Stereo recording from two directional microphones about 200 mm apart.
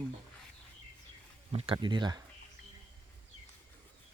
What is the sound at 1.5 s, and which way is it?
Speech, 25° right (ahead or behind).